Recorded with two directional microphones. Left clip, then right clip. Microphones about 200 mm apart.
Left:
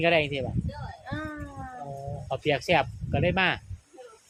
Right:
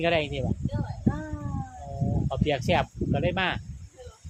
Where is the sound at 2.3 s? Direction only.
10° left (ahead or behind).